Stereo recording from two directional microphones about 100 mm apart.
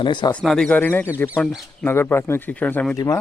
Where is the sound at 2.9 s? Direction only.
35° left (ahead or behind).